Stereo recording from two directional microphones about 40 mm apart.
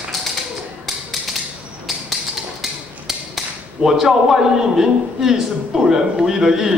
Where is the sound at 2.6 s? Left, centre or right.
Centre.